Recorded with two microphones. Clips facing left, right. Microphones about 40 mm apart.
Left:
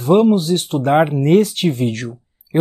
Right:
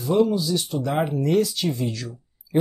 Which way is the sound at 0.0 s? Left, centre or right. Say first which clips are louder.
Left 7 dB; left.